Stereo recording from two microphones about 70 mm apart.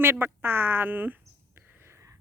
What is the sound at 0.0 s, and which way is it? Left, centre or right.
Speech, right.